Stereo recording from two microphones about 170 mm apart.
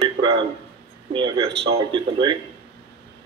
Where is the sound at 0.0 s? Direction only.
30° right (ahead or behind).